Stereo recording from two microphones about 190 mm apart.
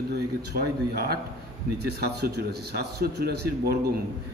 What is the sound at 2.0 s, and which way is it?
Speech, 55° right (ahead or behind).